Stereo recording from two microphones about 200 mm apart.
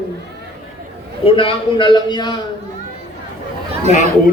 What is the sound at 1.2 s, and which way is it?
A man's voice, 25° left (ahead or behind).